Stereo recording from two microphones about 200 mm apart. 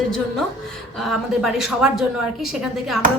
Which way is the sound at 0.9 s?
Centre (ahead or behind).